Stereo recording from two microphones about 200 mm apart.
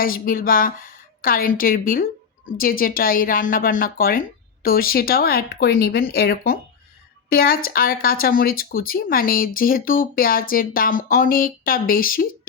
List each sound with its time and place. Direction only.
0.0 s speech: 45° left (ahead or behind)